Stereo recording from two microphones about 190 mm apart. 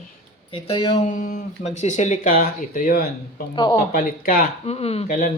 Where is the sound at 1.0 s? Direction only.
40° left (ahead or behind).